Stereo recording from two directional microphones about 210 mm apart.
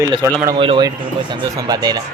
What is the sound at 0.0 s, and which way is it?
Speech, 20° right (ahead or behind).